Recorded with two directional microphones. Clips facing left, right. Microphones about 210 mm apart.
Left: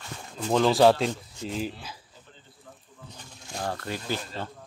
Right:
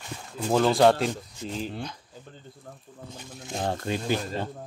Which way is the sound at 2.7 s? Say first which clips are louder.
Right 3 dB; 50° right (ahead or behind).